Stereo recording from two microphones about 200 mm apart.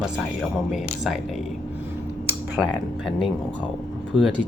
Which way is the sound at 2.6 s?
Centre (ahead or behind).